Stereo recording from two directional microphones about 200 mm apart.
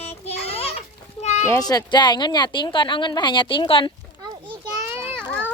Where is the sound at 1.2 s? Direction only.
35° left (ahead or behind).